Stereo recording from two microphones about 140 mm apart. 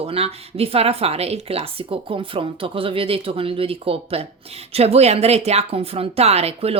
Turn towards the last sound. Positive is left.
turn(degrees=-45)  # may be behind; listen again after turning